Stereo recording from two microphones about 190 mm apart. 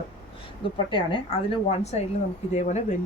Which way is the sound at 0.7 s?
25° left (ahead or behind).